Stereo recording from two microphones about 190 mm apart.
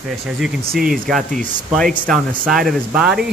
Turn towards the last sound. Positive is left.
turn(degrees=0)  # may be behind; listen again after turning